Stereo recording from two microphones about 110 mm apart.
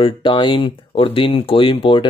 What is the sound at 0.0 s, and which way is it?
Speech, 50° left (ahead or behind).